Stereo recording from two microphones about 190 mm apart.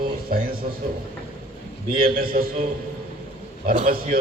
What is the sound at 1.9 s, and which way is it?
Speech, 50° right (ahead or behind).